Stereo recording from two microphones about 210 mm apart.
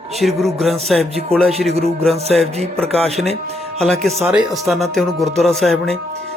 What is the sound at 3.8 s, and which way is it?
Speech, centre (ahead or behind).